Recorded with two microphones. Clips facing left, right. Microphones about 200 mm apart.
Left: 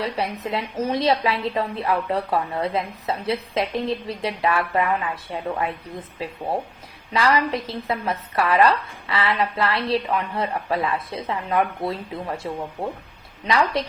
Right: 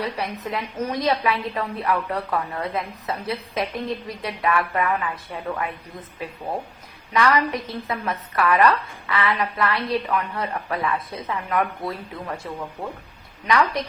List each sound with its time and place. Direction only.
0.0 s a woman's voice: 30° left (ahead or behind)
7.1 s a woman's voice: 30° left (ahead or behind)